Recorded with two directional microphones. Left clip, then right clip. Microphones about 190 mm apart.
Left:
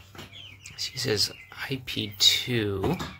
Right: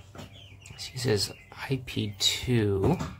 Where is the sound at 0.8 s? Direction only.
20° right (ahead or behind).